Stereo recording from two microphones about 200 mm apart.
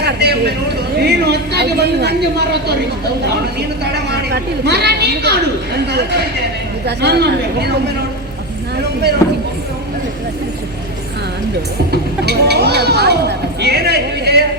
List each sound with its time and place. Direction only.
0.0 s a sound: 55° right (ahead or behind)
1.0 s a woman's voice: 55° right (ahead or behind)
3.9 s a woman's voice: 55° right (ahead or behind)
6.8 s a woman's voice: 55° right (ahead or behind)
11.9 s a woman's voice: 55° right (ahead or behind)